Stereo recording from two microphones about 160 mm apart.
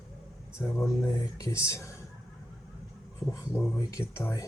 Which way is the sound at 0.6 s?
15° left (ahead or behind).